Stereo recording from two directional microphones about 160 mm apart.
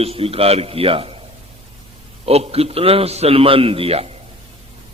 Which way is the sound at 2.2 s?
40° right (ahead or behind).